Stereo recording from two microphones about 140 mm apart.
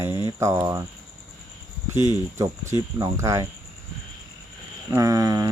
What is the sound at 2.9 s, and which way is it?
Speech, 20° right (ahead or behind).